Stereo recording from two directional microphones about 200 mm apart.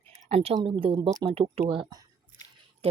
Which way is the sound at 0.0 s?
30° right (ahead or behind).